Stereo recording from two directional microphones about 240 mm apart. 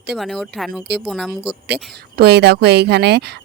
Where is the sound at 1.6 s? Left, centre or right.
Right.